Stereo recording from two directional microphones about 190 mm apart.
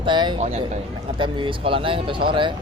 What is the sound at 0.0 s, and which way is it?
A man's voice, 25° right (ahead or behind).